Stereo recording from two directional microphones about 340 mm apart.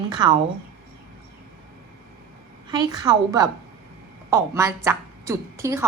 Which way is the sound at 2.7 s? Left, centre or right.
Centre.